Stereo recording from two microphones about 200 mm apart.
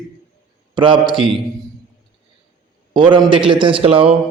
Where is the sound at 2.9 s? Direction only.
25° right (ahead or behind).